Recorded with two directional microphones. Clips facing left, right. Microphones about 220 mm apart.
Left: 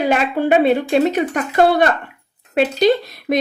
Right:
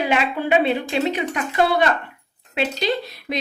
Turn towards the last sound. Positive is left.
turn(degrees=45)  # may be behind; listen again after turning